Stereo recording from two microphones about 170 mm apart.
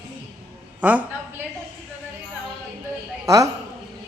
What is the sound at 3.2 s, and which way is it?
Speech, 20° right (ahead or behind).